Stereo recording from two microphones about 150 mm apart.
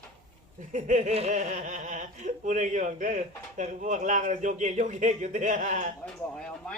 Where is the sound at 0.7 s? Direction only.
55° right (ahead or behind).